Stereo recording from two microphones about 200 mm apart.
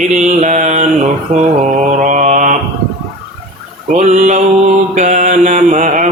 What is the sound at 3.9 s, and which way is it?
Mantra, 35° right (ahead or behind).